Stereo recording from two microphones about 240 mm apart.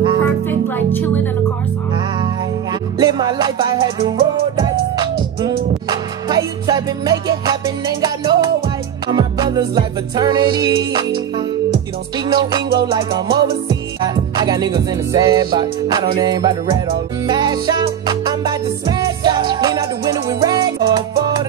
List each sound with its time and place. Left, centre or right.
0.2 s music: centre
3.0 s music: centre